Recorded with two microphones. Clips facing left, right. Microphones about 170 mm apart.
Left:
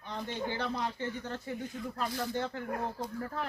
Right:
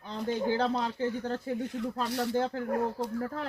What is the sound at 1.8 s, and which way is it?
Speech, 75° right (ahead or behind).